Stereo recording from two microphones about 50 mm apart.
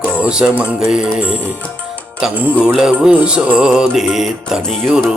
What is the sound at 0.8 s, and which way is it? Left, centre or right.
Speech, centre.